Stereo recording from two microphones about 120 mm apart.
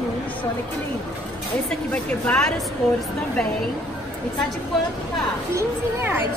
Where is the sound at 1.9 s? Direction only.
10° left (ahead or behind).